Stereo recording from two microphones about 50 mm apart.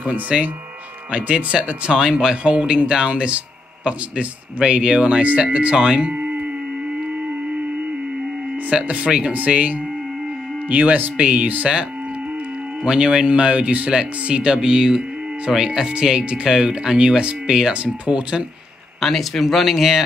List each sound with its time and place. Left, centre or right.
0.0 s speech: right
8.6 s speech: right
12.8 s speech: centre
18.9 s speech: centre